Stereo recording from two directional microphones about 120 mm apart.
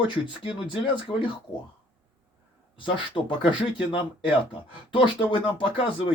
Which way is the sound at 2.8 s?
40° left (ahead or behind).